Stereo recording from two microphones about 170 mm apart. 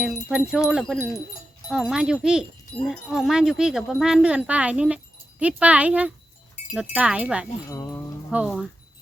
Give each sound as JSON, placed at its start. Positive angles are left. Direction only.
{"t": 0.3, "sound": "speech", "side_deg": -5}
{"t": 6.6, "sound": "wind chime", "side_deg": 45}
{"t": 6.9, "sound": "speech", "side_deg": -5}
{"t": 7.7, "sound": "a sound", "side_deg": 20}
{"t": 8.3, "sound": "speech", "side_deg": -5}